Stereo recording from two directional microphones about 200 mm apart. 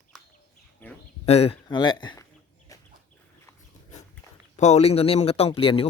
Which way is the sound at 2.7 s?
15° left (ahead or behind).